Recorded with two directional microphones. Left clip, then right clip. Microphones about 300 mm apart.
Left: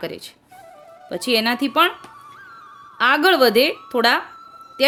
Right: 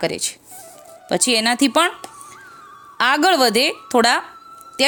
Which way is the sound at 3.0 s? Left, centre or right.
Right.